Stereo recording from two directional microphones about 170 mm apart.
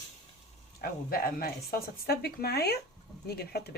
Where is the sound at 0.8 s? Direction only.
60° left (ahead or behind).